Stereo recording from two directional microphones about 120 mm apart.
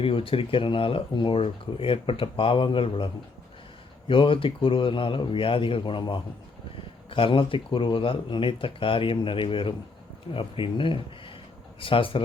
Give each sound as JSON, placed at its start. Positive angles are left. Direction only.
{"t": 0.0, "sound": "speech", "side_deg": 50}